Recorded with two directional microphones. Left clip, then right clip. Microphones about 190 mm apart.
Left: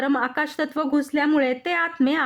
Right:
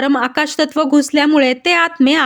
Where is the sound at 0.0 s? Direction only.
25° right (ahead or behind).